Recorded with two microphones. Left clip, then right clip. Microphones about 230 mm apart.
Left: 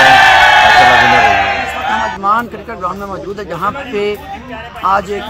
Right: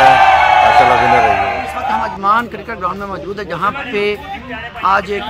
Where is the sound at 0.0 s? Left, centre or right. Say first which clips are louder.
Left 2 dB; right.